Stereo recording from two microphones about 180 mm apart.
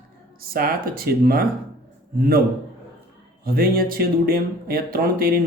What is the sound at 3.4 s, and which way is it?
A man's voice, 55° right (ahead or behind).